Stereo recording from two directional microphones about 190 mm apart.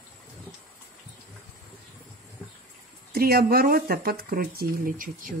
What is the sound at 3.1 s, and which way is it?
Speech, 55° right (ahead or behind).